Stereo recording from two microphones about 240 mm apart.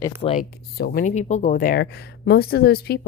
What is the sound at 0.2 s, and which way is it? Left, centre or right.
Speech, left.